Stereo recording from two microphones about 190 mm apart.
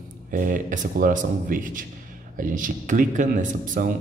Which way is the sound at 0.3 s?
45° right (ahead or behind).